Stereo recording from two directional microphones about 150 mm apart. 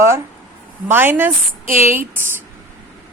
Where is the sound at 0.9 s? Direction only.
15° right (ahead or behind).